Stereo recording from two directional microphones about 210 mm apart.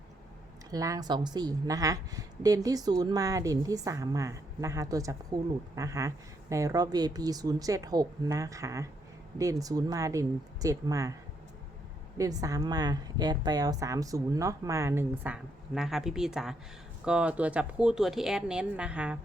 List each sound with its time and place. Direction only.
0.7 s a woman's voice: 15° right (ahead or behind)
12.1 s a woman's voice: 15° right (ahead or behind)